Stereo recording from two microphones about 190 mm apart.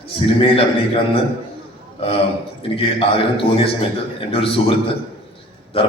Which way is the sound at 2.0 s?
30° left (ahead or behind).